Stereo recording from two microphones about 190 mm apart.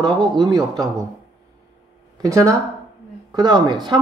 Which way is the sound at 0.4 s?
20° right (ahead or behind).